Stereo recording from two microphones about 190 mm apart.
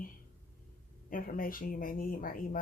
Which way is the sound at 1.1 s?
45° left (ahead or behind).